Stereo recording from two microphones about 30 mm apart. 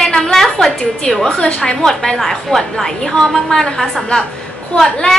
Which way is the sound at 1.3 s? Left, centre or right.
Left.